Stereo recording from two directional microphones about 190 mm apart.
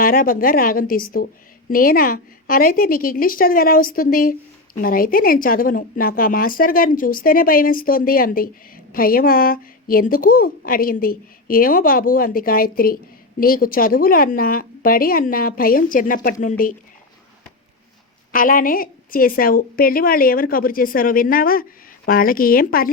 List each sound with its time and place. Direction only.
0.0 s a woman's voice: 50° left (ahead or behind)
18.3 s a woman's voice: 45° left (ahead or behind)